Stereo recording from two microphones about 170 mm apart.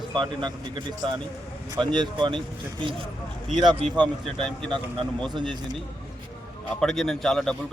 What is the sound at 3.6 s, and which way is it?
Speech, 25° right (ahead or behind).